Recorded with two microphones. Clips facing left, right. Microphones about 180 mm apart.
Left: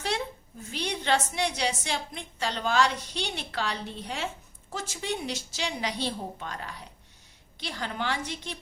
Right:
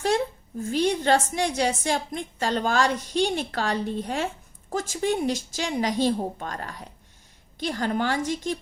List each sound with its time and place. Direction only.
0.6 s a woman's voice: 45° right (ahead or behind)